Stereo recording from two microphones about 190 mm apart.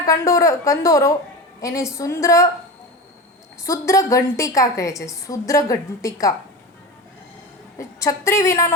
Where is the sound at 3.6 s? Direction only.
15° left (ahead or behind).